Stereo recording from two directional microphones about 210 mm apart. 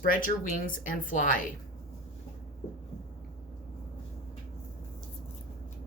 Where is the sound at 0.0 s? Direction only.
40° left (ahead or behind).